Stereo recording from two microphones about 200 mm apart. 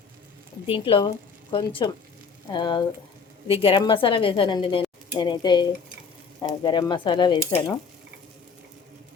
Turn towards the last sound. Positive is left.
turn(degrees=20)  # may be behind; listen again after turning